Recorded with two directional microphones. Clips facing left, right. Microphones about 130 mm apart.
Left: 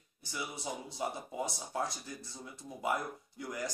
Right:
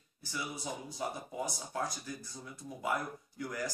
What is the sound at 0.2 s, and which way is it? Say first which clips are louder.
Speech: even; 20° left (ahead or behind).